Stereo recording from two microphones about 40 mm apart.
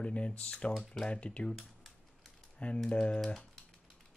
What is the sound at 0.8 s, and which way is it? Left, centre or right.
Speech, centre.